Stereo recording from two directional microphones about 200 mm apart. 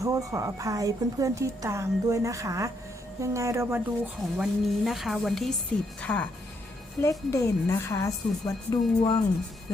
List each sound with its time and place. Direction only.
0.0 s a woman's voice: 15° right (ahead or behind); by 9.1 s 20° left (ahead or behind)